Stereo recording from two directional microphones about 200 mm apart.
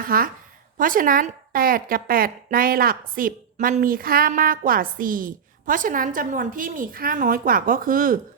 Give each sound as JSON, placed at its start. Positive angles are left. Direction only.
{"t": 0.0, "sound": "a woman's voice", "side_deg": -45}